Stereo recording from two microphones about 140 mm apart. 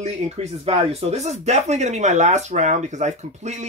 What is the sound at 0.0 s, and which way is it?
Speech, 50° right (ahead or behind).